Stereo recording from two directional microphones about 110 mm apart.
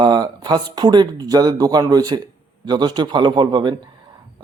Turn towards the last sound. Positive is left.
turn(degrees=-45)  # may be behind; listen again after turning